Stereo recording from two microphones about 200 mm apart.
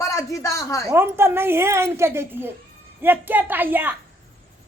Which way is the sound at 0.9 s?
10° right (ahead or behind).